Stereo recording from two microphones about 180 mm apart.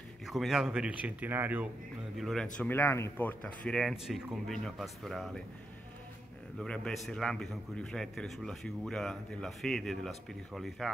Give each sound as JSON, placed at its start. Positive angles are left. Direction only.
{"t": 0.3, "sound": "speech", "side_deg": 0}
{"t": 2.1, "sound": "a man's voice", "side_deg": 0}
{"t": 6.6, "sound": "a man's voice", "side_deg": 5}